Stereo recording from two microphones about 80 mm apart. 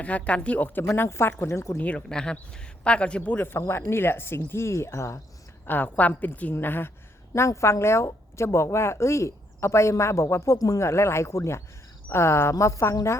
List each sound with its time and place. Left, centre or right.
0.0 s a woman's voice: centre; by 1.8 s left
1.8 s speech: centre
3.7 s a woman's voice: left
5.6 s a woman's voice: left
7.3 s a woman's voice: left